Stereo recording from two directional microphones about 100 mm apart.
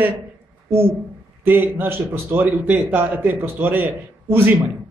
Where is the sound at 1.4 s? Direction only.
20° right (ahead or behind).